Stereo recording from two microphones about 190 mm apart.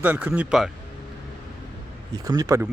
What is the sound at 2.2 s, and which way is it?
Speech, 20° right (ahead or behind).